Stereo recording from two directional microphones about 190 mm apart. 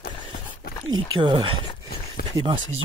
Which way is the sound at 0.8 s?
25° right (ahead or behind).